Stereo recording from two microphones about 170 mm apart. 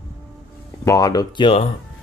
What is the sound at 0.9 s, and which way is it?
Speech, 20° left (ahead or behind).